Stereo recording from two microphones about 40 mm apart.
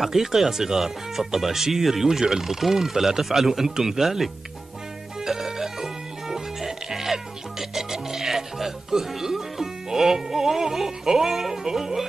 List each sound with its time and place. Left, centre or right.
0.0 s speech: centre
5.2 s music: centre